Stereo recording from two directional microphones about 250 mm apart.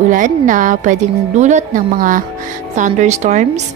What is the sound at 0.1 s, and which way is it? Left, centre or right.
A woman's voice, right.